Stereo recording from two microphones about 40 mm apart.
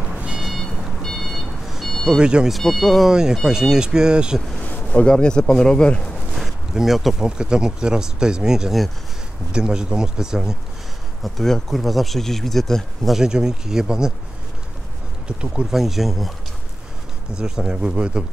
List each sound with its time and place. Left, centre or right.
1.0 s a sound: centre
2.0 s speech: right
2.6 s speech: centre
3.1 s speech: centre
4.8 s speech: left
6.7 s speech: centre
7.2 s speech: centre
11.2 s speech: centre
13.1 s speech: centre
15.2 s speech: right
15.7 s speech: centre
17.3 s speech: right